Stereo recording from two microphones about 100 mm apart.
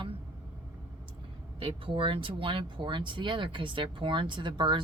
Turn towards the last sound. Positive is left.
turn(degrees=-50)  # may be behind; listen again after turning